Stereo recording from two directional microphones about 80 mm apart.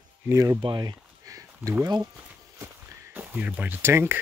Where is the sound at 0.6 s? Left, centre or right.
Right.